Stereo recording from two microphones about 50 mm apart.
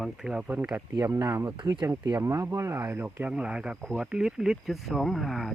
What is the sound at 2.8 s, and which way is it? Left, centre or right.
Speech, right.